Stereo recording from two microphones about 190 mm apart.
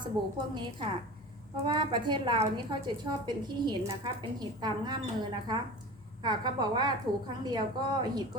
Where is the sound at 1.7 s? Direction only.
25° right (ahead or behind).